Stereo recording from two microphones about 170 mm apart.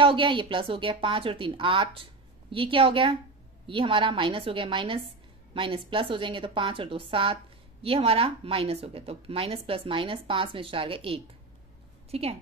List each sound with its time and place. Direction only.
0.0 s a woman's voice: 30° right (ahead or behind)